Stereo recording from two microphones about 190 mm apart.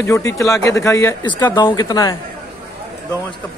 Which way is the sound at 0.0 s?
15° left (ahead or behind).